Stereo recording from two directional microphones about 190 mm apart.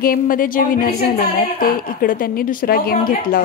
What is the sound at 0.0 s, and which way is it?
A woman's voice, 50° left (ahead or behind).